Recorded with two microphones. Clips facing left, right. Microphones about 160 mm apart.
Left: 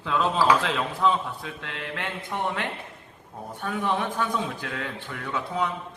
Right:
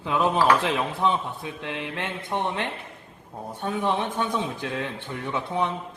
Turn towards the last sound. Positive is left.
turn(degrees=-25)  # may be behind; listen again after turning